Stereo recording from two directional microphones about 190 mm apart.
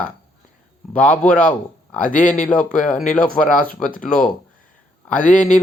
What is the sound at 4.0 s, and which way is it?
Speech, 5° left (ahead or behind).